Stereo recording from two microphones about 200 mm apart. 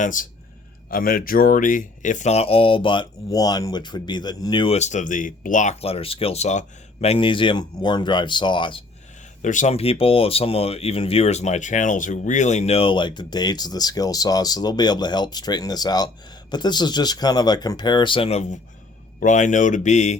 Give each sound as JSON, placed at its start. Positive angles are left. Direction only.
{"t": 0.0, "sound": "speech", "side_deg": 40}
{"t": 9.4, "sound": "speech", "side_deg": 40}